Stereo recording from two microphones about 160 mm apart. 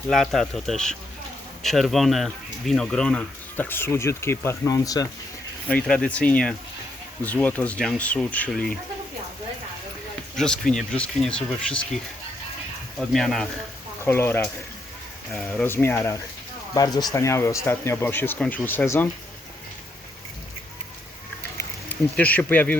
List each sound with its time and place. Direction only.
0.1 s speech: centre (ahead or behind); by 5.0 s 20° left (ahead or behind)
5.6 s speech: 5° left (ahead or behind)
10.3 s speech: 5° left (ahead or behind)
13.0 s speech: centre (ahead or behind)
14.0 s speech: 15° left (ahead or behind)
22.1 s speech: 10° left (ahead or behind)